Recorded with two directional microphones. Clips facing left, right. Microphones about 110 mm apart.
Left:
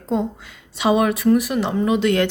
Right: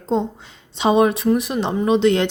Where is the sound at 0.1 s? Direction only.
30° right (ahead or behind).